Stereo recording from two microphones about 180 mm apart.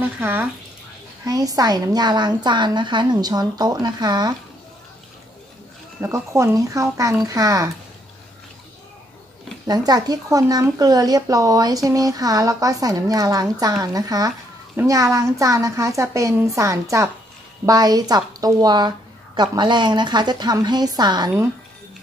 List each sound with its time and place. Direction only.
0.0 s a woman's voice: 10° right (ahead or behind)
1.2 s speech: 20° right (ahead or behind)
5.9 s speech: 15° right (ahead or behind)
9.7 s a woman's voice: 20° right (ahead or behind)